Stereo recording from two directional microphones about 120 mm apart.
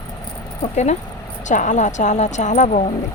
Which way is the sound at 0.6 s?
70° left (ahead or behind).